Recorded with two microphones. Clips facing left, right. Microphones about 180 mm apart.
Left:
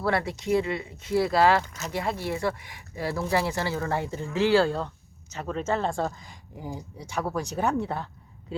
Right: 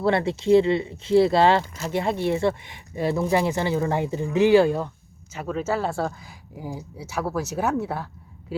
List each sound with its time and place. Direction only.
0.0 s speech: 25° right (ahead or behind); by 8.5 s 5° right (ahead or behind)